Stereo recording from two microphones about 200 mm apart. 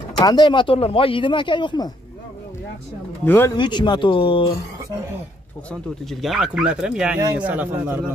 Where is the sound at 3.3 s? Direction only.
10° left (ahead or behind).